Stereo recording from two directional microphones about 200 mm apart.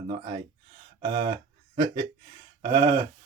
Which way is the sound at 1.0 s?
20° right (ahead or behind).